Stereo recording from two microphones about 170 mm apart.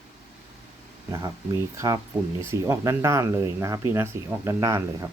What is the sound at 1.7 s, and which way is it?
Speech, 20° right (ahead or behind).